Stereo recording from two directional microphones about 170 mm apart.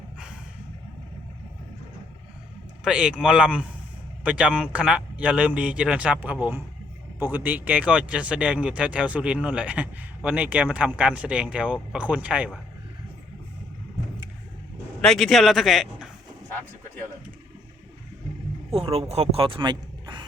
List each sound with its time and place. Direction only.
2.8 s speech: 5° right (ahead or behind)
15.0 s speech: centre (ahead or behind)
18.7 s speech: 35° right (ahead or behind)